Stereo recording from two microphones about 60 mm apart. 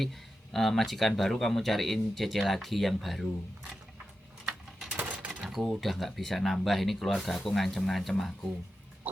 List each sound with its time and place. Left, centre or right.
0.0 s speech: centre
4.9 s a sound: right
5.6 s speech: centre